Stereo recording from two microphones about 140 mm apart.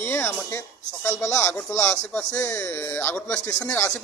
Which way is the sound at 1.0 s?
20° left (ahead or behind).